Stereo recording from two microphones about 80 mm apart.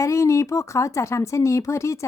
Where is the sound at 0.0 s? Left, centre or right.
Left.